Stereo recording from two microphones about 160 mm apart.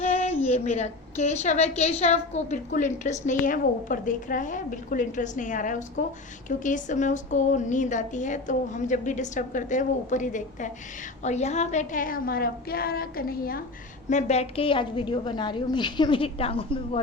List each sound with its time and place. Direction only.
0.0 s a sound: 45° left (ahead or behind)
0.4 s a woman's voice: 45° left (ahead or behind); by 13.6 s 65° left (ahead or behind)
14.1 s a woman's voice: 45° left (ahead or behind)